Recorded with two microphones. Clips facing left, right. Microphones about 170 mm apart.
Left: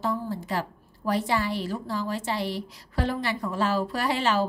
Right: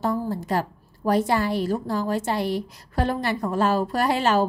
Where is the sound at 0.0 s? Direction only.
45° right (ahead or behind).